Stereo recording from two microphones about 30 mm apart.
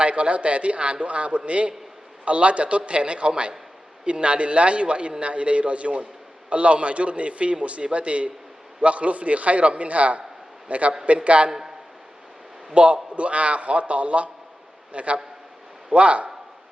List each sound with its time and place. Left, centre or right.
0.0 s a man's voice: right
12.7 s a man's voice: right